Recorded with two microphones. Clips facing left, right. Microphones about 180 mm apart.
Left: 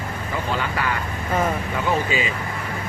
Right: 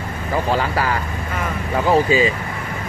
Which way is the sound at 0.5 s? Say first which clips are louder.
Right 5 dB; 35° right (ahead or behind).